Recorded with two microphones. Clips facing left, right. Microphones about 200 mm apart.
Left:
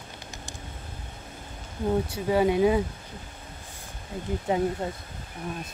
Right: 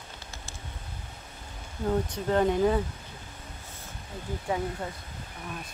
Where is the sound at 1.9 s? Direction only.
10° left (ahead or behind).